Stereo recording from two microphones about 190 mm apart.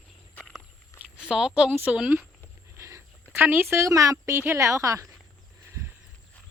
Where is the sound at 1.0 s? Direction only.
5° right (ahead or behind).